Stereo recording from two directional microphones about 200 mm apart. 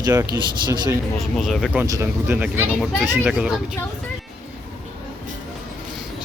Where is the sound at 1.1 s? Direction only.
Centre (ahead or behind).